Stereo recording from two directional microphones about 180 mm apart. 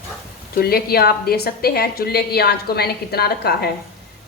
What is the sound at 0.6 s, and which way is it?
A woman's voice, 55° left (ahead or behind).